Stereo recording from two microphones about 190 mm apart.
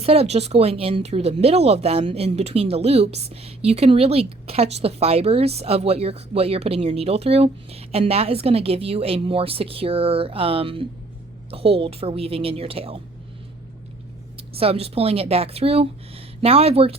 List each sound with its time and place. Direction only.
0.0 s speech: 30° right (ahead or behind)
14.6 s speech: 30° right (ahead or behind)